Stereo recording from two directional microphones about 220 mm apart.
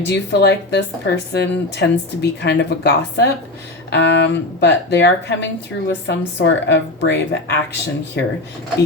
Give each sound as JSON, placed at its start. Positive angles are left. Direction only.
{"t": 0.0, "sound": "a woman's voice", "side_deg": 50}